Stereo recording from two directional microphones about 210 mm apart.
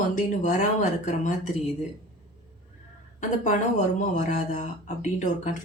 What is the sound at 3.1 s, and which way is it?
Speech, 35° left (ahead or behind).